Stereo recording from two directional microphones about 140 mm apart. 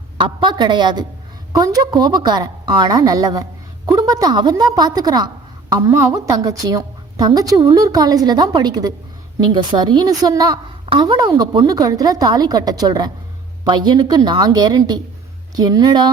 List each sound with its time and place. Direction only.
0.2 s a woman's voice: 35° right (ahead or behind)